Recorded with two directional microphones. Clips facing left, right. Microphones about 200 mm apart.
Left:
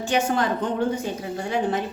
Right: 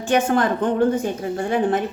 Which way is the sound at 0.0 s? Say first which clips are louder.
Right 4 dB; 50° right (ahead or behind).